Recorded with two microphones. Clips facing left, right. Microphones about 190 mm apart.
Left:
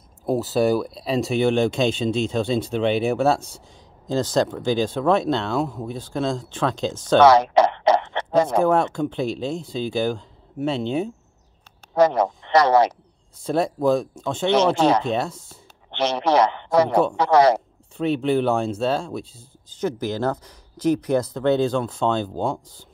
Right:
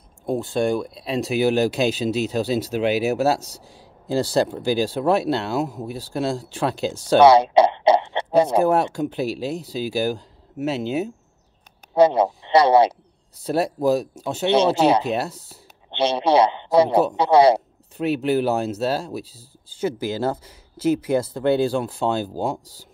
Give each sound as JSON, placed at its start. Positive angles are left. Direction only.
{"t": 0.3, "sound": "a man's voice", "side_deg": 5}
{"t": 7.1, "sound": "a sound", "side_deg": -10}
{"t": 8.5, "sound": "a man's voice", "side_deg": -10}